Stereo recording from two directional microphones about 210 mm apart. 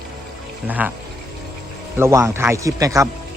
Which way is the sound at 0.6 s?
10° right (ahead or behind).